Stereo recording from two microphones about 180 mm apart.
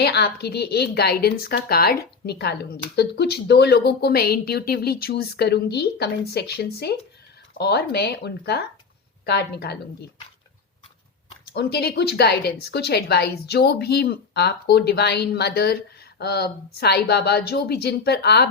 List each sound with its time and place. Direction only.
0.0 s speech: 65° left (ahead or behind)
11.5 s speech: 65° left (ahead or behind)